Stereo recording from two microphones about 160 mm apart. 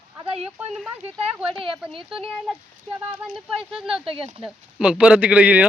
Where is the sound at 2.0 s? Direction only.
5° right (ahead or behind).